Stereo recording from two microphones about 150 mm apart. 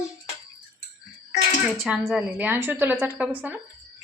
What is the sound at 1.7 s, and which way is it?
A woman's voice, 5° right (ahead or behind).